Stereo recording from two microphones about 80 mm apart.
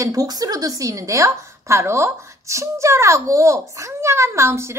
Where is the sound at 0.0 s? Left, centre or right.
Right.